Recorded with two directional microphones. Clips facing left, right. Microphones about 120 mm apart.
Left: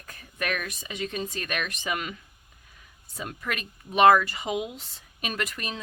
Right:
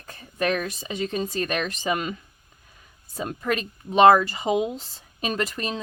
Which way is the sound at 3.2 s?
35° right (ahead or behind).